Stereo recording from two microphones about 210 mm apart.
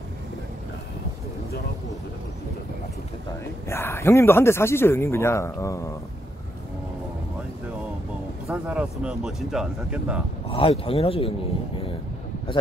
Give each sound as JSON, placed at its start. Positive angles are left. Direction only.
{"t": 3.6, "sound": "speech", "side_deg": 10}
{"t": 8.5, "sound": "speech", "side_deg": -5}
{"t": 10.5, "sound": "speech", "side_deg": 25}